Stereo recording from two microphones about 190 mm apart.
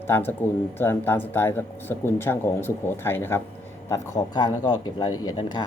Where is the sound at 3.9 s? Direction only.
20° left (ahead or behind).